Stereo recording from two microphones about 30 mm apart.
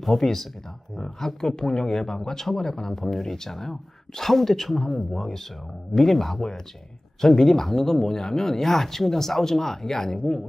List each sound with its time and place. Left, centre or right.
0.0 s speech: centre